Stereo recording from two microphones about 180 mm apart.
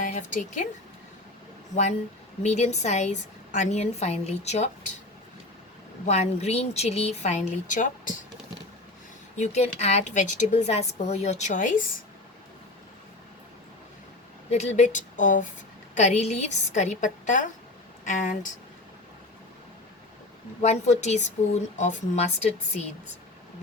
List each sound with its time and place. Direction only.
0.0 s speech: 45° left (ahead or behind)
1.7 s a woman's voice: 40° left (ahead or behind)
6.1 s a woman's voice: 40° left (ahead or behind)
9.4 s a woman's voice: 40° left (ahead or behind)
14.5 s a woman's voice: 40° left (ahead or behind)
20.6 s a woman's voice: 40° left (ahead or behind)